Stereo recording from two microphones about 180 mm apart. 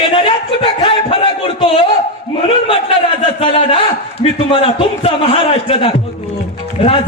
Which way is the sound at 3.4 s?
30° left (ahead or behind).